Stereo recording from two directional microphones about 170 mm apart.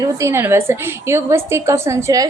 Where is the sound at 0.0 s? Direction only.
15° right (ahead or behind).